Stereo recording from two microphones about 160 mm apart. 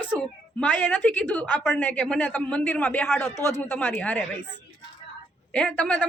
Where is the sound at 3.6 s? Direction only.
10° left (ahead or behind).